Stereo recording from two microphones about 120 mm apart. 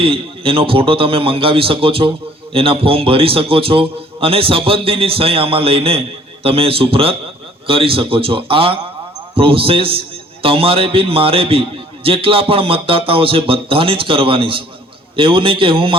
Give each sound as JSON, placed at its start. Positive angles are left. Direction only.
{"t": 0.0, "sound": "a man's voice", "side_deg": -50}